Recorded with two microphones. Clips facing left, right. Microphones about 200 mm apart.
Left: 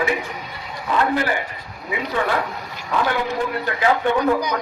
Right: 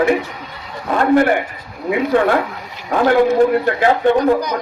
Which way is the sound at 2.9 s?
45° right (ahead or behind).